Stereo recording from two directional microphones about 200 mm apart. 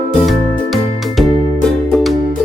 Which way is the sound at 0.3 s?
Centre (ahead or behind).